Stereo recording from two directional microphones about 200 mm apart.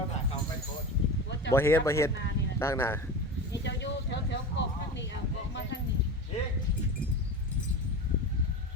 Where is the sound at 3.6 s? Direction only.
60° left (ahead or behind).